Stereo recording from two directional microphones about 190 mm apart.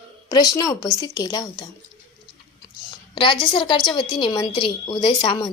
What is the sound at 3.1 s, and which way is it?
A woman's voice, 25° left (ahead or behind).